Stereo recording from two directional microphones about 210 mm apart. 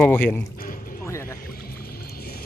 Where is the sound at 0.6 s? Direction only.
40° left (ahead or behind).